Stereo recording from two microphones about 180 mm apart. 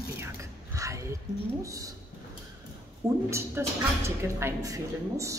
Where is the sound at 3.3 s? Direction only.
15° right (ahead or behind).